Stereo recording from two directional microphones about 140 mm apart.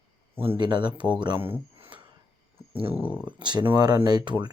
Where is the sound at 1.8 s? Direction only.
35° right (ahead or behind).